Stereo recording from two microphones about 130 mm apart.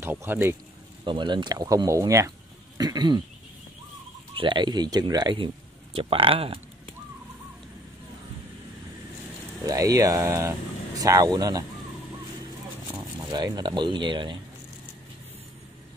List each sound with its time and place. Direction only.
0.0 s speech: 15° right (ahead or behind)
1.0 s speech: 35° right (ahead or behind)
4.4 s speech: 40° right (ahead or behind)
9.7 s speech: 25° right (ahead or behind)
13.3 s speech: 30° right (ahead or behind)